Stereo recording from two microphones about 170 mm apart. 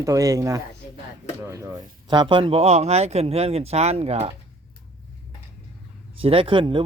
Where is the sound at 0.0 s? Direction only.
20° right (ahead or behind); by 4.3 s 35° right (ahead or behind).